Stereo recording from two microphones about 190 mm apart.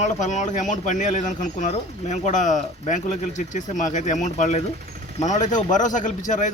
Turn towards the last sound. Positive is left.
turn(degrees=40)  # may be behind; listen again after turning